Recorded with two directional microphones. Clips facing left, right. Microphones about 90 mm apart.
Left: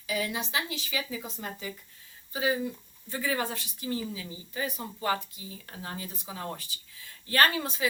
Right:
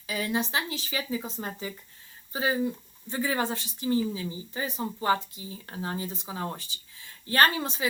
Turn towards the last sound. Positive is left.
turn(degrees=-25)  # may be behind; listen again after turning